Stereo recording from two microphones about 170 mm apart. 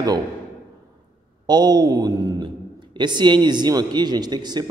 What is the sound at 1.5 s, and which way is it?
A man's voice, 25° right (ahead or behind).